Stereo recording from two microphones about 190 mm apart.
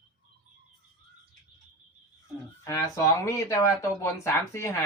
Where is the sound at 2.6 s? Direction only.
15° left (ahead or behind).